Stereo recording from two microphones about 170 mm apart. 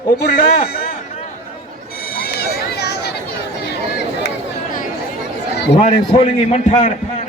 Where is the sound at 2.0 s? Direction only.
65° left (ahead or behind).